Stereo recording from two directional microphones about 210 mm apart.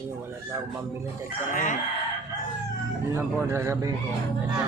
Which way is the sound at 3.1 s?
15° right (ahead or behind).